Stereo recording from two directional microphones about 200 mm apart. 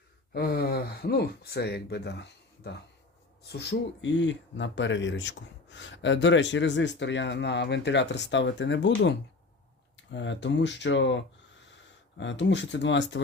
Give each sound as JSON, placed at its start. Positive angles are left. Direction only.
{"t": 0.3, "sound": "speech", "side_deg": 50}